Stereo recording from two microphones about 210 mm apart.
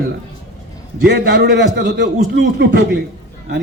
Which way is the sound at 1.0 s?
55° right (ahead or behind).